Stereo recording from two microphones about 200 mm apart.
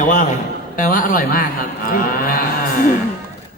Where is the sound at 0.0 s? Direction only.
40° left (ahead or behind).